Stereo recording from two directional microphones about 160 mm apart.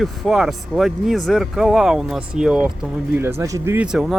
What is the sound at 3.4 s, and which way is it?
Speech, 15° right (ahead or behind).